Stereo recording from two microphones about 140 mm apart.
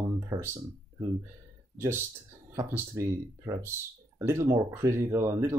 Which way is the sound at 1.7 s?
20° right (ahead or behind).